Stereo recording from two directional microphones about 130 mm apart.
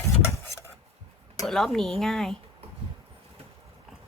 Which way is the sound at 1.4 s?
Centre (ahead or behind).